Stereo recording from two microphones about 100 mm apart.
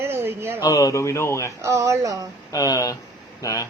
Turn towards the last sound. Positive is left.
turn(degrees=30)  # may be behind; listen again after turning